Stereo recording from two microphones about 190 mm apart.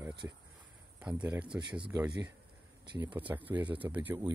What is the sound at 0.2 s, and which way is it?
Speech, 15° right (ahead or behind).